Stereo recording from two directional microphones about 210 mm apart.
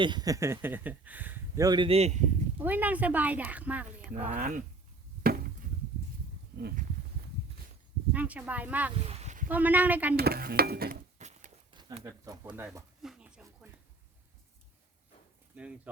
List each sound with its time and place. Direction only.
0.0 s speech: 20° right (ahead or behind)
2.6 s speech: 10° right (ahead or behind)
4.0 s speech: 35° right (ahead or behind)
5.2 s chop: 45° right (ahead or behind)
6.6 s stir: 45° right (ahead or behind)
8.1 s speech: 5° right (ahead or behind)
9.0 s a sound: 30° right (ahead or behind)
9.5 s speech: 10° right (ahead or behind)
10.2 s stir: 50° right (ahead or behind)
11.2 s a sound: 35° right (ahead or behind)
11.7 s speech: 20° right (ahead or behind)
13.0 s a sound: 5° right (ahead or behind)
15.5 s speech: 5° right (ahead or behind)